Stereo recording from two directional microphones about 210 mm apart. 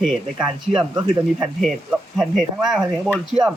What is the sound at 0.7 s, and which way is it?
Speech, 25° right (ahead or behind).